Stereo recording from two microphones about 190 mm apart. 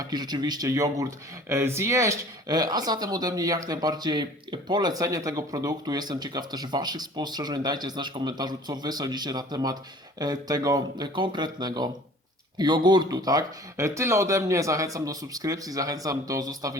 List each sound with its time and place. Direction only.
0.0 s speech: 20° right (ahead or behind)